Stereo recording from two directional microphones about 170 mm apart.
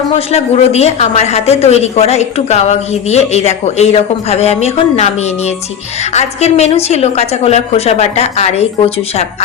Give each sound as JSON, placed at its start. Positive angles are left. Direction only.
{"t": 0.3, "sound": "speech", "side_deg": 40}